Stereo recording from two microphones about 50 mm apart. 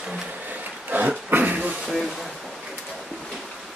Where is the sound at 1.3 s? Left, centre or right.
Right.